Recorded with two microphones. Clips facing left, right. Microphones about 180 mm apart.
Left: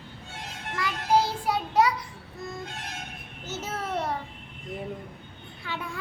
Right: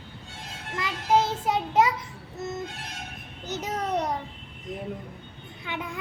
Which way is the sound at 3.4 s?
15° right (ahead or behind).